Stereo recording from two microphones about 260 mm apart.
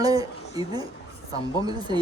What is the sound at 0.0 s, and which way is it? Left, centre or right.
A woman's voice, centre.